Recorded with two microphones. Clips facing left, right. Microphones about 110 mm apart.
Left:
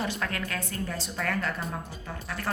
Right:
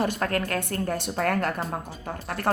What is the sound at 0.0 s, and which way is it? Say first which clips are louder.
Speech: right 6 dB; 50° right (ahead or behind).